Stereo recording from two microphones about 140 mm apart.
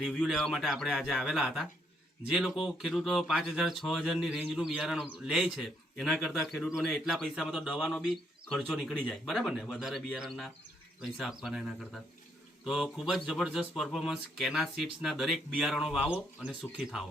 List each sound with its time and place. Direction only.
0.1 s speech: centre (ahead or behind)